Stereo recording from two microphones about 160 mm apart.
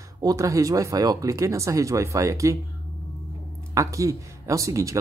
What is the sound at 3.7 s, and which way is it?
Speech, 20° right (ahead or behind).